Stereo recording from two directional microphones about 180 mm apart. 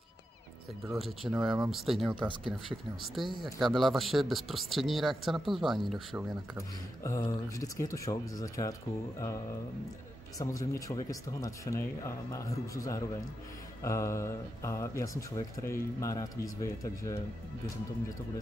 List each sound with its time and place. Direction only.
0.9 s speech: centre (ahead or behind)
7.0 s speech: 15° left (ahead or behind)
10.4 s speech: 15° left (ahead or behind)